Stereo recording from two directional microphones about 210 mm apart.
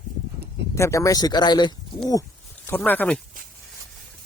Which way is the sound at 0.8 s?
15° left (ahead or behind).